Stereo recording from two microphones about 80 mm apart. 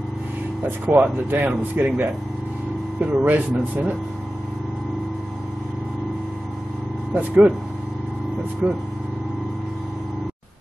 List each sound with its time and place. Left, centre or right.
0.7 s speech: centre
7.2 s speech: centre
8.6 s speech: centre